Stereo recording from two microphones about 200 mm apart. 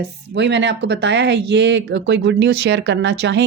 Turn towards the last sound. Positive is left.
turn(degrees=-60)  # may be behind; listen again after turning